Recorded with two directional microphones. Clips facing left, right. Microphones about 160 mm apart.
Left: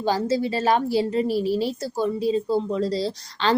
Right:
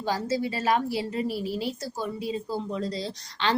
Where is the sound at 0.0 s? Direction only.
30° left (ahead or behind).